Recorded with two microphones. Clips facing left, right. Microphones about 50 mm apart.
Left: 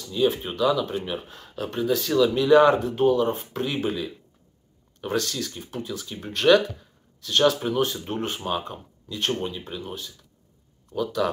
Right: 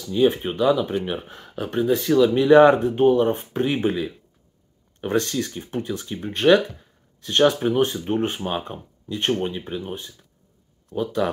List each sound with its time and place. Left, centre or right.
0.1 s speech: right
6.2 s speech: right
7.2 s speech: right